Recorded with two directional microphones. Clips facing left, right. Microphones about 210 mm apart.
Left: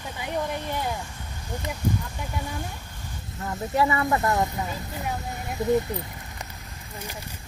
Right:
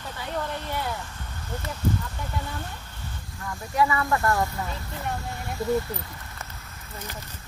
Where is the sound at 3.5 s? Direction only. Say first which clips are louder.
Left 1 dB; 20° left (ahead or behind).